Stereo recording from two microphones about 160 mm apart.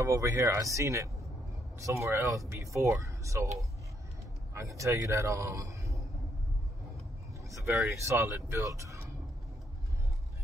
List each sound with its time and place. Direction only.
0.0 s speech: 20° right (ahead or behind)
4.6 s a man's voice: 20° right (ahead or behind)
8.0 s speech: 20° right (ahead or behind)